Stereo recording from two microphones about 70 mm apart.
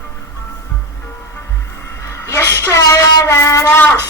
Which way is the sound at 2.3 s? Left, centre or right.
Left.